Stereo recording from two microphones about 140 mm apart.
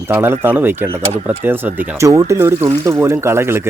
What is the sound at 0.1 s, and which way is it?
Speech, 15° right (ahead or behind).